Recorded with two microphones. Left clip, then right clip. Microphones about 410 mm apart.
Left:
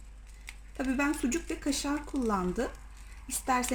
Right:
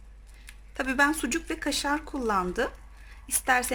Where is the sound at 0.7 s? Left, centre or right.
Right.